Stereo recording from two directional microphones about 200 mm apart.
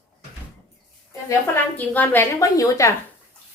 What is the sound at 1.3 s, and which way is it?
A woman's voice, 10° left (ahead or behind).